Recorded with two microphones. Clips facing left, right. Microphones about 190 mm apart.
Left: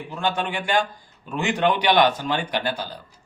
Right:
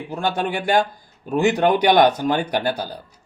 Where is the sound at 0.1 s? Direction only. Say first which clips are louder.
Right 3 dB; 40° right (ahead or behind).